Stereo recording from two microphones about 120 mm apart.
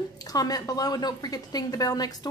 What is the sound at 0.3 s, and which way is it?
A woman's voice, 30° left (ahead or behind).